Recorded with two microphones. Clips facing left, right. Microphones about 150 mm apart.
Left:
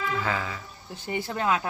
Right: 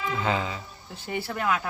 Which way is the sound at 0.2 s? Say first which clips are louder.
Right 2 dB; 20° right (ahead or behind).